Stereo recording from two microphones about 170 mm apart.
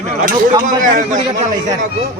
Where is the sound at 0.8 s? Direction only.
50° right (ahead or behind).